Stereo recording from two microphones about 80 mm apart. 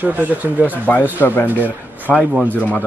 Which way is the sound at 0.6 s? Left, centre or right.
Left.